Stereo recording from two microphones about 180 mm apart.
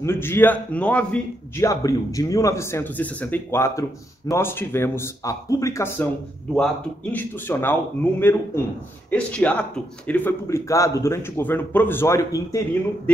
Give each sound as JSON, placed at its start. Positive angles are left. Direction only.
{"t": 0.0, "sound": "a man's voice", "side_deg": 15}
{"t": 1.7, "sound": "a man's voice", "side_deg": 20}